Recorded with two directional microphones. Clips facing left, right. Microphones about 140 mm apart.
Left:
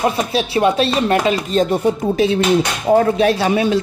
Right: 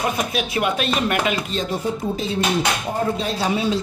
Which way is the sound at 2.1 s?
80° left.